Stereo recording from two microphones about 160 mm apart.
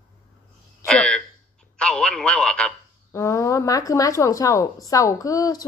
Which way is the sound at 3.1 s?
20° left (ahead or behind).